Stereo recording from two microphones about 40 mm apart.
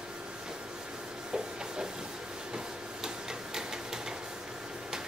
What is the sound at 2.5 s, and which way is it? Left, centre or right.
Printer, centre.